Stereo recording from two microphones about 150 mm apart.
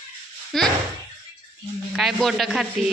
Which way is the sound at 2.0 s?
Centre (ahead or behind).